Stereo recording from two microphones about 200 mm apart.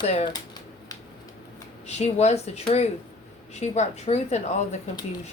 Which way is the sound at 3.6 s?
35° left (ahead or behind).